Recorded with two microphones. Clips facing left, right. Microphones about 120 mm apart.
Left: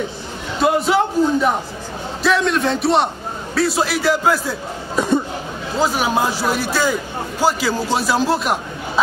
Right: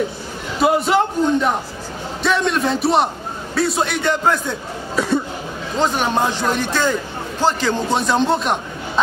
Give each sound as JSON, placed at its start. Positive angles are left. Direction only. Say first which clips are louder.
{"t": 0.6, "sound": "a sound", "louder": "even", "side_deg": 0}
{"t": 2.2, "sound": "a man's voice", "louder": "left 1 dB", "side_deg": 0}
{"t": 4.9, "sound": "cough", "louder": "left 1 dB", "side_deg": 20}
{"t": 5.8, "sound": "a man's voice", "louder": "even", "side_deg": 5}